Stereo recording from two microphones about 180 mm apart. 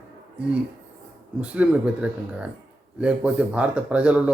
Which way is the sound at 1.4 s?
5° right (ahead or behind).